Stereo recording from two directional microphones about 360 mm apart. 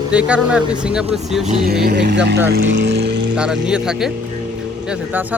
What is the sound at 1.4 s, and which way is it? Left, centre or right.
Speech, right.